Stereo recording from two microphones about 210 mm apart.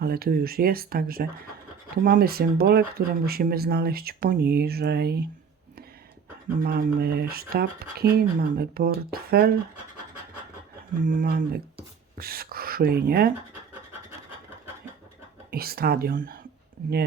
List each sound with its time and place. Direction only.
0.0 s speech: 45° right (ahead or behind)
6.6 s speech: 45° right (ahead or behind)
11.0 s speech: 40° right (ahead or behind)
15.5 s speech: 45° right (ahead or behind)